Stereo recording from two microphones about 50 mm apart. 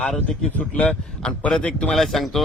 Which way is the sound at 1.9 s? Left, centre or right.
Centre.